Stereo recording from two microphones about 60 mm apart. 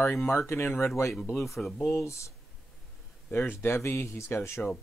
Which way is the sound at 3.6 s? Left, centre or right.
Left.